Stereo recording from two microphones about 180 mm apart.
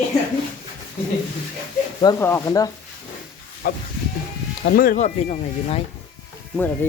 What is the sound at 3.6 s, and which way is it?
Sheep, 50° left (ahead or behind).